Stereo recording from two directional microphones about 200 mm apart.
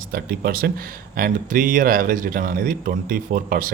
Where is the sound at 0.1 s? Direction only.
45° right (ahead or behind).